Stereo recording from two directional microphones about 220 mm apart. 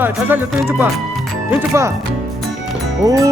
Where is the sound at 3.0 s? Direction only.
15° right (ahead or behind).